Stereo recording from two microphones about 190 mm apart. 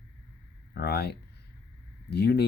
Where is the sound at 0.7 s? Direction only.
60° left (ahead or behind).